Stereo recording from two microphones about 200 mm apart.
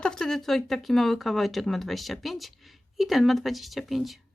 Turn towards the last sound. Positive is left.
turn(degrees=0)  # may be behind; listen again after turning